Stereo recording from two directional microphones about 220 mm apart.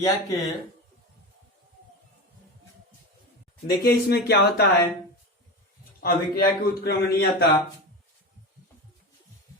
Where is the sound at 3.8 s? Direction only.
50° left (ahead or behind).